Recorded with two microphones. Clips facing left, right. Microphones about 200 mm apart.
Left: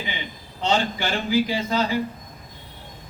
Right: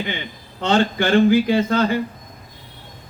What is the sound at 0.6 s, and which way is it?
A man's voice, 55° right (ahead or behind).